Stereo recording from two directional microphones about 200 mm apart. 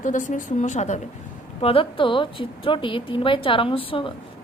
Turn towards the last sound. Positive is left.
turn(degrees=25)  # may be behind; listen again after turning